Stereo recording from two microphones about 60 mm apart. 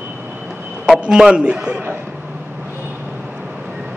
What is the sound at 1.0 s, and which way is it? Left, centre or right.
Speech, centre.